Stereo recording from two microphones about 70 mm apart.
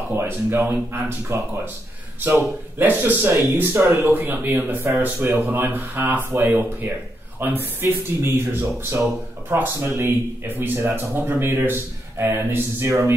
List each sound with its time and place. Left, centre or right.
0.1 s speech: right
2.8 s speech: right